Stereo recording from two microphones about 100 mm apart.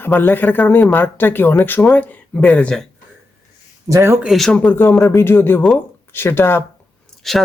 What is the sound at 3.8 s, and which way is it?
Speech, 30° right (ahead or behind).